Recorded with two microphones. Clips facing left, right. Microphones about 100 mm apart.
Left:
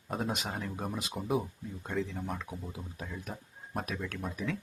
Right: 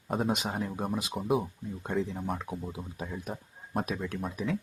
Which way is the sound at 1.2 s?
Centre (ahead or behind).